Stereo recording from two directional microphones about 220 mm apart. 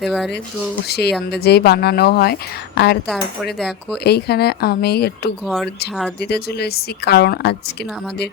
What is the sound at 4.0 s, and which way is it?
Speech, 45° left (ahead or behind).